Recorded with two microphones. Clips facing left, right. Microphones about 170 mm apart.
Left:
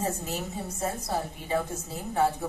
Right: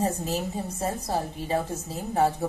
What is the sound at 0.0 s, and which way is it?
A woman's voice, 35° right (ahead or behind).